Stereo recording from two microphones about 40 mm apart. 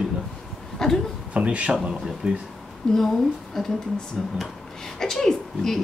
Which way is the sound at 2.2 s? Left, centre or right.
Centre.